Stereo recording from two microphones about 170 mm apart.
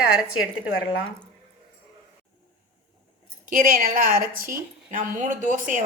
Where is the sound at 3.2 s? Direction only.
50° right (ahead or behind).